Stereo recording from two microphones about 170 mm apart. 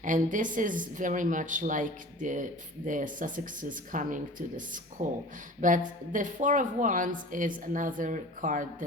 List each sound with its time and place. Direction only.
0.0 s a woman's voice: 50° right (ahead or behind)